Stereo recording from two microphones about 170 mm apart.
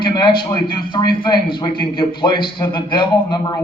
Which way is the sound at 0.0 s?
30° left (ahead or behind).